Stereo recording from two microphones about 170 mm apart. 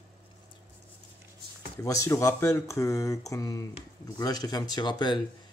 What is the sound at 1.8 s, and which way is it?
Speech, 20° left (ahead or behind).